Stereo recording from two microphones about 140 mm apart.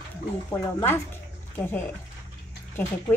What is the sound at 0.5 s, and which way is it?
Speech, 15° left (ahead or behind).